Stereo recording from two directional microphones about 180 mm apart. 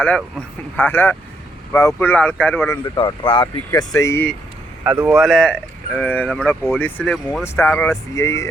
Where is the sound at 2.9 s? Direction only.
30° left (ahead or behind); by 4.3 s 15° left (ahead or behind).